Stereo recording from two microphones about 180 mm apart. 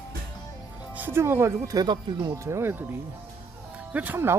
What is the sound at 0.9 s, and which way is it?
Speech, 10° right (ahead or behind).